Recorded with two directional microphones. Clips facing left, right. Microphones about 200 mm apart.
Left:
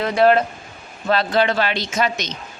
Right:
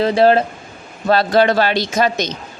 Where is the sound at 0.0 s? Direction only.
30° right (ahead or behind).